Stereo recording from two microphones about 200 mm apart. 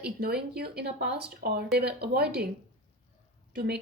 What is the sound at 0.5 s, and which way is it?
Speech, 50° right (ahead or behind).